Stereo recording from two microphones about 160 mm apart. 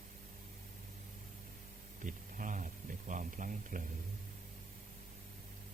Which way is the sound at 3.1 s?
55° right (ahead or behind).